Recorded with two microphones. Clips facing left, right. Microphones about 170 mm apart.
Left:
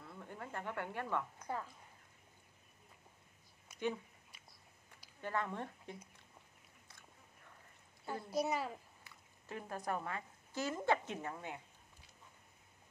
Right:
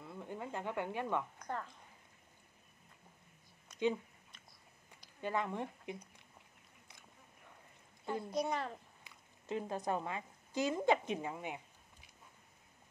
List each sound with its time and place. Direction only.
0.0 s a sound: 15° right (ahead or behind)
1.4 s speech: 10° left (ahead or behind)
5.2 s speech: 15° right (ahead or behind)
8.0 s a child's voice: 5° left (ahead or behind)
9.0 s speech: 20° right (ahead or behind)